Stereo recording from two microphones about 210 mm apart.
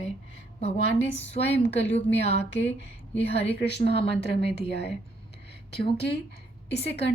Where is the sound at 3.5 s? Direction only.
50° right (ahead or behind).